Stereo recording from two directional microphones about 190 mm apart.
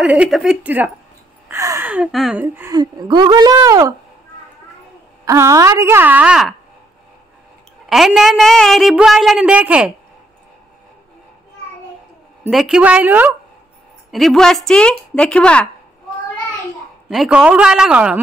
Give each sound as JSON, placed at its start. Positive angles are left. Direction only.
{"t": 0.0, "sound": "a woman's voice", "side_deg": -5}
{"t": 2.8, "sound": "a woman's voice", "side_deg": -20}
{"t": 5.2, "sound": "a woman's voice", "side_deg": -15}
{"t": 7.9, "sound": "a woman's voice", "side_deg": 0}
{"t": 12.4, "sound": "a woman's voice", "side_deg": 0}
{"t": 14.1, "sound": "a woman's voice", "side_deg": 0}
{"t": 17.1, "sound": "a woman's voice", "side_deg": -5}